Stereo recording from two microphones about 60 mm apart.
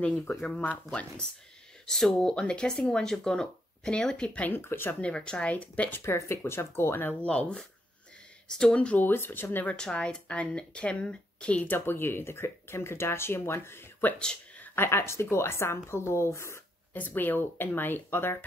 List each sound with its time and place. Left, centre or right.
0.0 s a woman's voice: centre
4.6 s speech: left
5.0 s a woman's voice: centre
6.1 s speech: left
7.2 s speech: centre
8.7 s a woman's voice: centre
9.0 s speech: left
9.7 s speech: centre
11.6 s speech: left
14.1 s speech: centre
14.9 s speech: left
16.9 s speech: left